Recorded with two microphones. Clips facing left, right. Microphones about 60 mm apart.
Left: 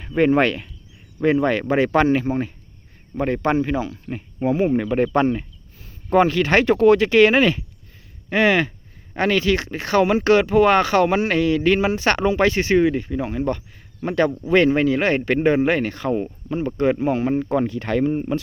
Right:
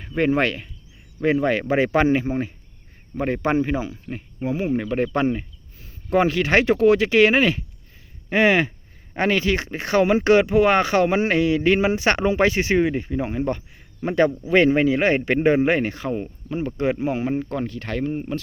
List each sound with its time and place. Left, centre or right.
0.0 s speech: centre
3.9 s speech: centre
16.0 s speech: centre